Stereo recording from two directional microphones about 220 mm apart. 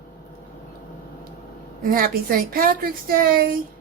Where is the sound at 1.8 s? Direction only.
40° right (ahead or behind).